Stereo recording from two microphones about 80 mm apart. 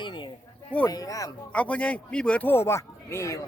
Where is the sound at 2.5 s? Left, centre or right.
Left.